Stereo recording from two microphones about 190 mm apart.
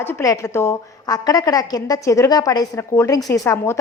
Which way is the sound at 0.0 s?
15° left (ahead or behind).